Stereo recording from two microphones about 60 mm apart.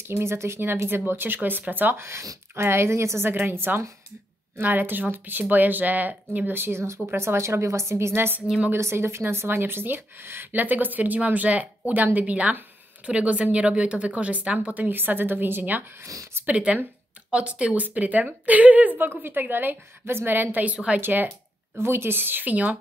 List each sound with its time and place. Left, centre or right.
0.0 s speech: right
2.0 s a woman's voice: right
3.3 s a woman's voice: right
8.1 s speech: right
8.7 s speech: right
16.4 s speech: right
18.9 s speech: right
21.0 s speech: right